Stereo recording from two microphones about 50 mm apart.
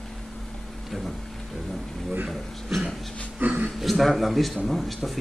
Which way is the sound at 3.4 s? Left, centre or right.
Right.